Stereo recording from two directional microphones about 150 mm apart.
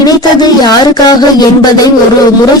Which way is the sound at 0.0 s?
25° left (ahead or behind).